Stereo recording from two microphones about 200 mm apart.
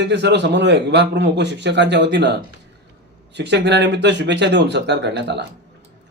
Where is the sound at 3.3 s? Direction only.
60° right (ahead or behind).